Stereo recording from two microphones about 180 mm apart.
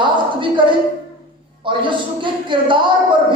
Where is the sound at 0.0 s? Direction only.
25° right (ahead or behind).